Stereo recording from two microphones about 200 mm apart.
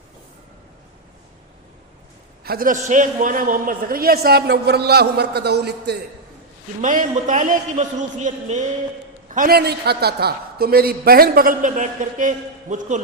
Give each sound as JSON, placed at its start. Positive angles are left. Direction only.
{"t": 2.4, "sound": "a woman's voice", "side_deg": -50}
{"t": 6.8, "sound": "a man's voice", "side_deg": -40}